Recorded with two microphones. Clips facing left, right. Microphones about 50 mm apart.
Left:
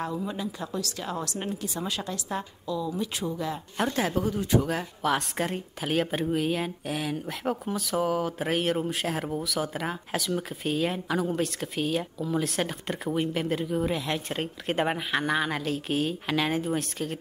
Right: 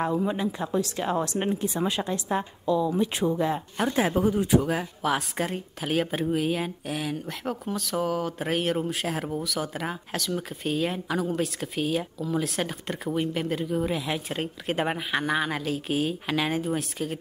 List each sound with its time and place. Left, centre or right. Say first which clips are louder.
0.0 s speech: right 5 dB; right
3.9 s a woman's voice: right 7 dB; centre